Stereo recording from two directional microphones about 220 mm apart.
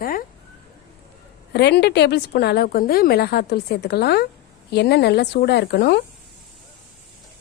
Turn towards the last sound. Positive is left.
turn(degrees=45)  # may be behind; listen again after turning